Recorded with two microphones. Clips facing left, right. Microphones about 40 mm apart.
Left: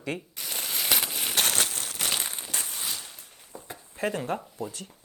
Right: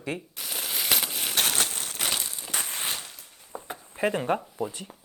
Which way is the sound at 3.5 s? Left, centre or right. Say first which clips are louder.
Right 5 dB; right.